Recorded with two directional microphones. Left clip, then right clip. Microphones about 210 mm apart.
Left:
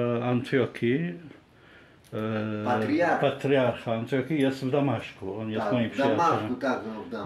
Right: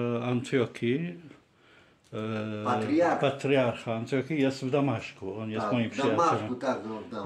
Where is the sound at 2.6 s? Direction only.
45° right (ahead or behind).